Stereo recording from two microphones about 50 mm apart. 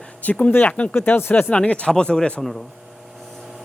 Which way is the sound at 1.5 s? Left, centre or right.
Left.